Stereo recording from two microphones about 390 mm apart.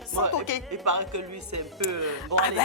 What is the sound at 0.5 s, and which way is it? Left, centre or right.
Speech, left.